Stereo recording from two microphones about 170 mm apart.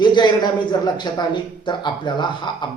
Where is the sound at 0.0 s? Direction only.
25° left (ahead or behind).